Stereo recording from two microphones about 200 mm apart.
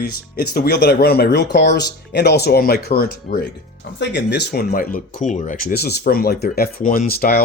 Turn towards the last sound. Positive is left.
turn(degrees=50)  # may be behind; listen again after turning